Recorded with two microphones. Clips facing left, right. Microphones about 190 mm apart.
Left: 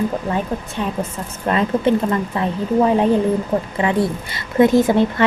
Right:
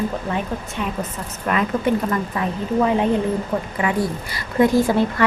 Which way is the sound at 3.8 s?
25° left (ahead or behind).